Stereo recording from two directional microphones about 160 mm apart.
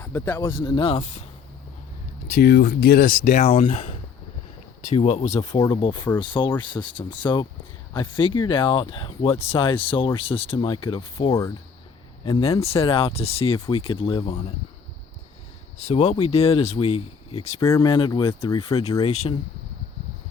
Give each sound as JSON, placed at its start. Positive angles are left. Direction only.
{"t": 0.0, "sound": "speech", "side_deg": 15}
{"t": 0.5, "sound": "speech", "side_deg": 30}
{"t": 2.4, "sound": "speech", "side_deg": 80}
{"t": 5.0, "sound": "speech", "side_deg": 45}
{"t": 5.5, "sound": "speech", "side_deg": 20}
{"t": 5.7, "sound": "speech", "side_deg": 30}
{"t": 12.4, "sound": "speech", "side_deg": 40}
{"t": 15.9, "sound": "speech", "side_deg": 45}
{"t": 17.6, "sound": "speech", "side_deg": 20}
{"t": 17.8, "sound": "speech", "side_deg": 30}
{"t": 19.0, "sound": "speech", "side_deg": 45}